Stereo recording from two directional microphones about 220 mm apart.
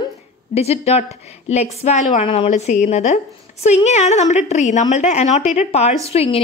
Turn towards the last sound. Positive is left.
turn(degrees=30)  # may be behind; listen again after turning